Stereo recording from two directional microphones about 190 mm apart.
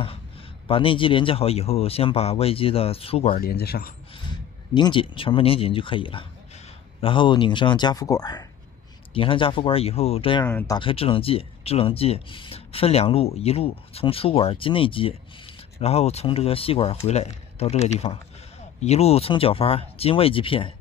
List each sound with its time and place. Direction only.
0.7 s speech: 25° left (ahead or behind)
3.3 s speech: 55° left (ahead or behind)
4.3 s speech: 25° left (ahead or behind)